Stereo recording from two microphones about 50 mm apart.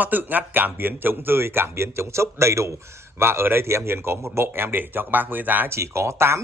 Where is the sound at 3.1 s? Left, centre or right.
Right.